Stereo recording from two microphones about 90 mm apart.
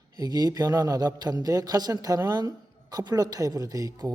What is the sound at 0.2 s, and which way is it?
A man's voice, 50° right (ahead or behind).